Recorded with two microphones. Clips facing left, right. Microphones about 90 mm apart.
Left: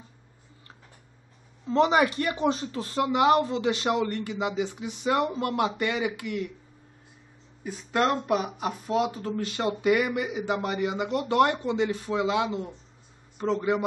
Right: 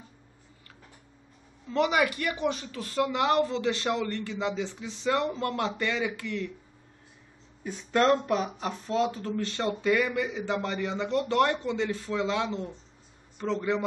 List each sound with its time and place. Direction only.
1.7 s speech: 30° left (ahead or behind)
7.6 s a man's voice: 5° left (ahead or behind)